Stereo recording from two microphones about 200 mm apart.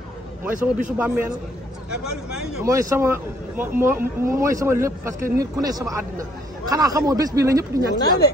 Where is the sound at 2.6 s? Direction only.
15° right (ahead or behind).